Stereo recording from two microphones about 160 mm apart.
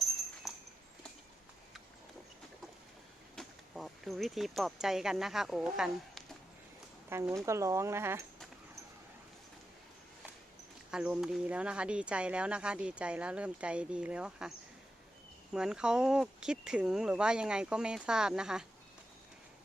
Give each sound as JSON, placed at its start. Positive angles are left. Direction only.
{"t": 0.5, "sound": "a sound", "side_deg": 0}
{"t": 3.3, "sound": "speech", "side_deg": 0}
{"t": 7.1, "sound": "speech", "side_deg": -15}
{"t": 10.9, "sound": "speech", "side_deg": -5}
{"t": 15.5, "sound": "speech", "side_deg": -5}